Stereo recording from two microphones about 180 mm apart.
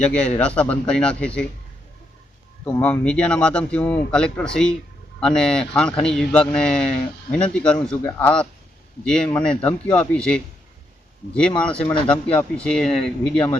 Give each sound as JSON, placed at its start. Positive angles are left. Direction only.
{"t": 0.0, "sound": "speech", "side_deg": 5}
{"t": 2.6, "sound": "speech", "side_deg": 5}